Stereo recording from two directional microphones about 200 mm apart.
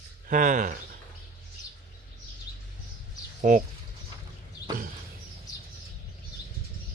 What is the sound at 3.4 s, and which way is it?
Speech, 45° right (ahead or behind).